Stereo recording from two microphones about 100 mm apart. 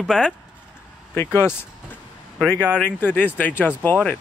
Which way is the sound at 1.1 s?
25° left (ahead or behind).